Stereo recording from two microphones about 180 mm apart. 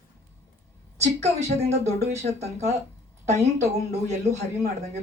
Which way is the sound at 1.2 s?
40° right (ahead or behind).